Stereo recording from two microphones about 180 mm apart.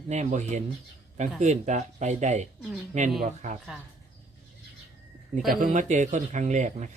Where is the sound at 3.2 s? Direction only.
40° right (ahead or behind).